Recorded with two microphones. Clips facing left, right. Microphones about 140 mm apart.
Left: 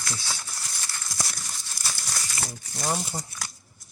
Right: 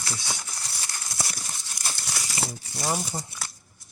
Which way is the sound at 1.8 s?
20° right (ahead or behind).